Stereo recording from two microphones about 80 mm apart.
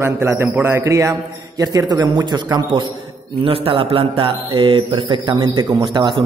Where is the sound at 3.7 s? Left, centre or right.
Right.